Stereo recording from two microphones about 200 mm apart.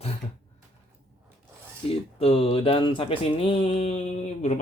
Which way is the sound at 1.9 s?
30° left (ahead or behind).